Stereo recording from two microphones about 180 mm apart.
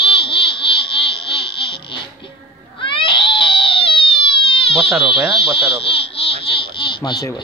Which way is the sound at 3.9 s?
30° left (ahead or behind).